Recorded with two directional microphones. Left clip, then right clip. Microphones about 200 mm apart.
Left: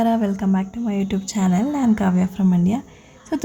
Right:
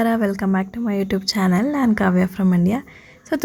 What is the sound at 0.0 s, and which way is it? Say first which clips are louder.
A woman's voice: right 1 dB; 15° right (ahead or behind).